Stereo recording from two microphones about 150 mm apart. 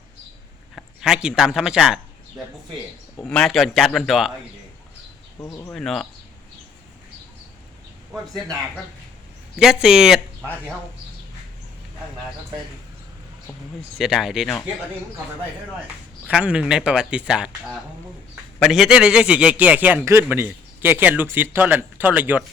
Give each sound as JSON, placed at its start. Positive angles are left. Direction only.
{"t": 0.8, "sound": "a sound", "side_deg": -5}
{"t": 1.4, "sound": "a man's voice", "side_deg": -5}
{"t": 3.2, "sound": "a man's voice", "side_deg": 5}
{"t": 5.4, "sound": "speech", "side_deg": 20}
{"t": 5.7, "sound": "a man's voice", "side_deg": 0}
{"t": 9.6, "sound": "a man's voice", "side_deg": -5}
{"t": 14.0, "sound": "a man's voice", "side_deg": 0}
{"t": 16.2, "sound": "speech", "side_deg": -10}